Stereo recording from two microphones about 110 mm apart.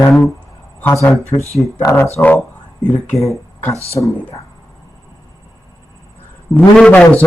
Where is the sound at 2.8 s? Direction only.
10° left (ahead or behind).